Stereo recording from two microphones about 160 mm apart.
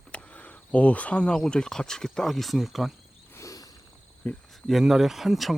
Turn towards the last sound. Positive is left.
turn(degrees=0)  # may be behind; listen again after turning